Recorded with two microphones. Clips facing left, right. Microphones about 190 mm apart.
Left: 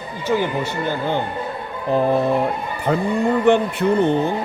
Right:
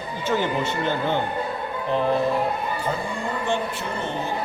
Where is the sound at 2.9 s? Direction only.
70° left (ahead or behind).